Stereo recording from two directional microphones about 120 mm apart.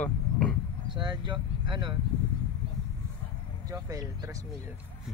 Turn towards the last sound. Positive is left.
turn(degrees=-25)  # may be behind; listen again after turning